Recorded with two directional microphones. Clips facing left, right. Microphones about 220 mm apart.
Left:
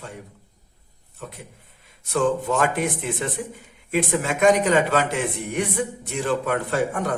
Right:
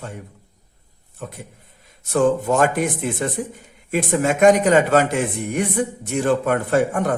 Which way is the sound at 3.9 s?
45° right (ahead or behind).